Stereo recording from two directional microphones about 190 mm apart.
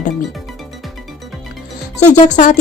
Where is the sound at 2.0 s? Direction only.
40° left (ahead or behind).